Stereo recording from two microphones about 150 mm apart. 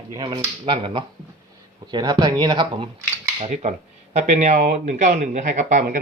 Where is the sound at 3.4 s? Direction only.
55° right (ahead or behind).